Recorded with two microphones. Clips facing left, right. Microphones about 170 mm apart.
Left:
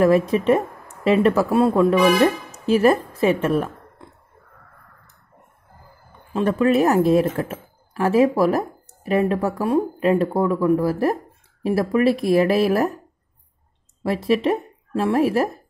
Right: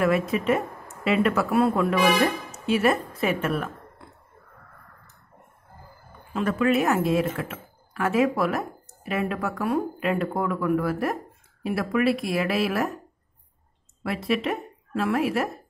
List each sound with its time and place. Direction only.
0.0 s speech: 35° left (ahead or behind)
6.3 s speech: 35° left (ahead or behind)
14.0 s speech: 35° left (ahead or behind)